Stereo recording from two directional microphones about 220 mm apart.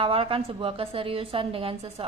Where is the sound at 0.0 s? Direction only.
25° right (ahead or behind).